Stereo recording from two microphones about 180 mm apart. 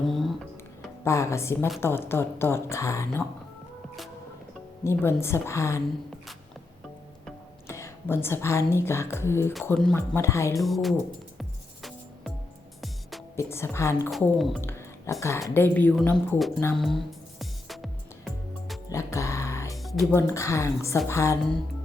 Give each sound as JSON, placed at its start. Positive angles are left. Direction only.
{"t": 0.0, "sound": "music", "side_deg": 0}
{"t": 1.0, "sound": "speech", "side_deg": 15}
{"t": 4.8, "sound": "speech", "side_deg": 15}
{"t": 7.7, "sound": "speech", "side_deg": 15}
{"t": 10.6, "sound": "speech", "side_deg": 0}
{"t": 11.3, "sound": "music", "side_deg": 0}
{"t": 13.3, "sound": "speech", "side_deg": 15}
{"t": 14.3, "sound": "speech", "side_deg": 0}
{"t": 14.6, "sound": "a sound", "side_deg": 15}
{"t": 15.2, "sound": "speech", "side_deg": 15}
{"t": 16.7, "sound": "music", "side_deg": 0}
{"t": 18.9, "sound": "music", "side_deg": 15}
{"t": 19.7, "sound": "music", "side_deg": 0}
{"t": 20.1, "sound": "speech", "side_deg": 15}